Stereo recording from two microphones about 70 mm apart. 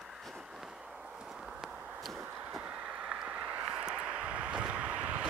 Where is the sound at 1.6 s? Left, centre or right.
Centre.